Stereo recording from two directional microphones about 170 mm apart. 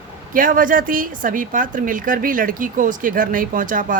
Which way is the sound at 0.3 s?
55° right (ahead or behind).